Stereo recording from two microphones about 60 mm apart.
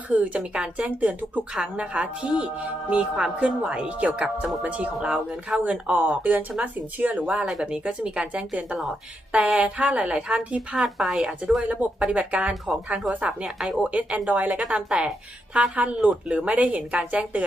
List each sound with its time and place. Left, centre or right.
0.1 s speech: centre
10.8 s speech: centre